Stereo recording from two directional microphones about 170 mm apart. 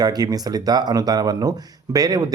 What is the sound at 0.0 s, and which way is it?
Speech, 25° right (ahead or behind).